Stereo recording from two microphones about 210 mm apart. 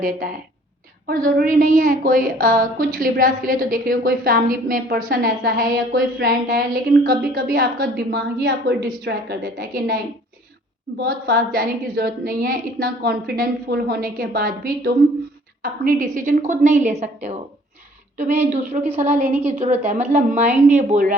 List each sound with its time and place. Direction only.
1.0 s a woman's voice: 45° right (ahead or behind)
18.5 s a woman's voice: 30° right (ahead or behind)
18.9 s a woman's voice: 10° right (ahead or behind)
19.5 s a woman's voice: 35° right (ahead or behind)